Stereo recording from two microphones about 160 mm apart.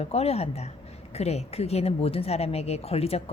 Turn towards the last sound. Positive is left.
turn(degrees=40)  # may be behind; listen again after turning